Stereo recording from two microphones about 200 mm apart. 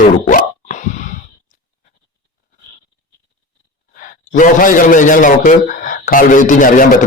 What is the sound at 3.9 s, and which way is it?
A man's voice, 40° left (ahead or behind).